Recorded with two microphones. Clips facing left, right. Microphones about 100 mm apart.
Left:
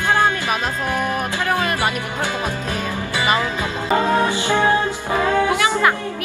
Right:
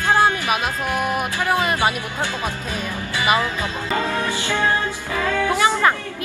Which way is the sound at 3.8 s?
20° left (ahead or behind).